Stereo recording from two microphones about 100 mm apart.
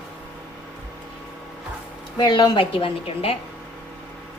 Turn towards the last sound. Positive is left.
turn(degrees=70)  # may be behind; listen again after turning